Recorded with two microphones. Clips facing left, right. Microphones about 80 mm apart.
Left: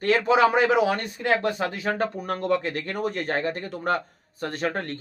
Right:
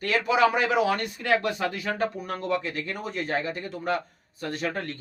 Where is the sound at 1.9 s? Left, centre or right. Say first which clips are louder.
Left 2 dB; left.